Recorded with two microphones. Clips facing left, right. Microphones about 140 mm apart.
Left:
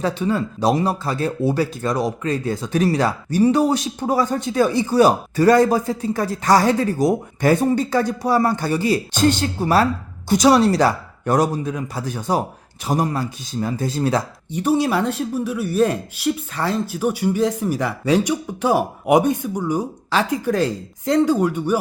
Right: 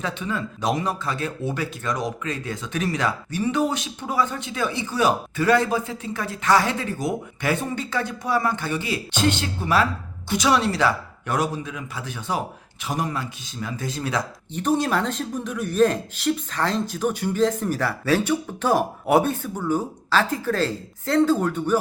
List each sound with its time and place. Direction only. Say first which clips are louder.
0.0 s speech: left 7 dB; 35° left (ahead or behind)
14.5 s speech: left 3 dB; 10° left (ahead or behind)